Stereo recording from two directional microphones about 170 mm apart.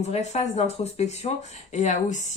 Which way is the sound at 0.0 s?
40° left (ahead or behind).